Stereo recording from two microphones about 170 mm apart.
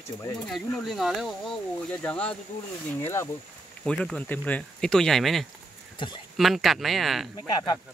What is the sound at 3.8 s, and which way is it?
Speech, 5° left (ahead or behind).